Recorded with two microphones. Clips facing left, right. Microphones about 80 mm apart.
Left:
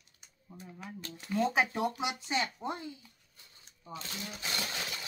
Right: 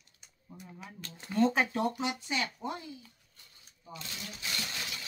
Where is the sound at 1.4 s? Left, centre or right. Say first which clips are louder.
Right 2 dB; centre; by 2.8 s left.